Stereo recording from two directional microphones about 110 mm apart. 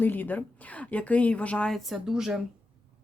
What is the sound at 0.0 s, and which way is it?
Speech, 15° left (ahead or behind).